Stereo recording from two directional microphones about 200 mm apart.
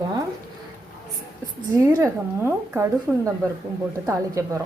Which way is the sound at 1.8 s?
15° right (ahead or behind).